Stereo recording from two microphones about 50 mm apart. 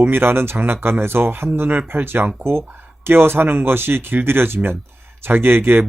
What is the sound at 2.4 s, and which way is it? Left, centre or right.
Speech, right.